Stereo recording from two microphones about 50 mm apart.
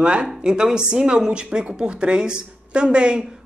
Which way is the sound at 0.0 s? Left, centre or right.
Centre.